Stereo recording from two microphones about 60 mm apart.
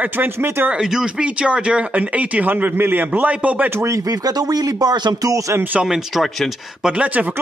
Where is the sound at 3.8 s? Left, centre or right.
Right.